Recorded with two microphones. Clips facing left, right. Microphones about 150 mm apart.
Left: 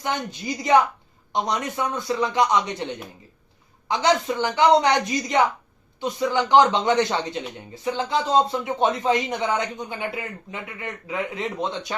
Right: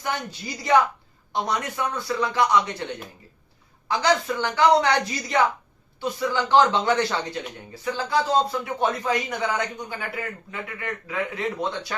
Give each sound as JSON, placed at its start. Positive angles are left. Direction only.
{"t": 0.0, "sound": "a man's voice", "side_deg": 20}
{"t": 3.8, "sound": "a man's voice", "side_deg": 20}